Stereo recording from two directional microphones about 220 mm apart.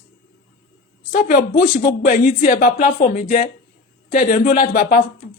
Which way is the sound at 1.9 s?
40° left (ahead or behind).